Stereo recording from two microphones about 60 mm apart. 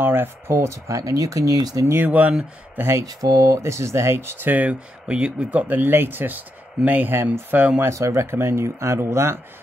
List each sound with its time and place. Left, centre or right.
0.0 s speech: right
2.0 s speech: right
3.0 s speech: right
4.5 s speech: right
7.9 s speech: right
8.3 s speech: right